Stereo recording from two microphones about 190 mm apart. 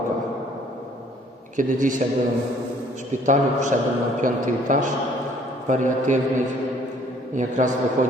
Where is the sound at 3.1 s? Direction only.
40° right (ahead or behind).